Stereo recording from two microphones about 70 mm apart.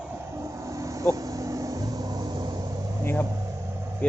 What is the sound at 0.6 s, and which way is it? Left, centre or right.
Vehicle, right.